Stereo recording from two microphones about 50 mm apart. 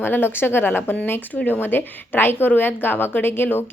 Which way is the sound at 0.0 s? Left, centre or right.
Left.